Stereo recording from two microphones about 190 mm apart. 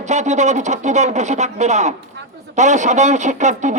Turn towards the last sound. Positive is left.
turn(degrees=-40)  # may be behind; listen again after turning